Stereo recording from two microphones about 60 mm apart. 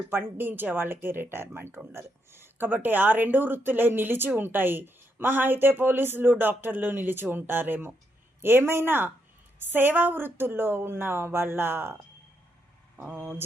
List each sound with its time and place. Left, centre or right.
0.1 s a woman's voice: right